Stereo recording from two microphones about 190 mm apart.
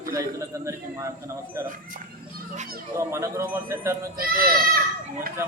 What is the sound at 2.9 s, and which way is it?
A man's voice, 15° right (ahead or behind).